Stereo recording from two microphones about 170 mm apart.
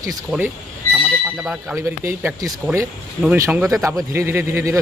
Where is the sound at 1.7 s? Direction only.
15° right (ahead or behind).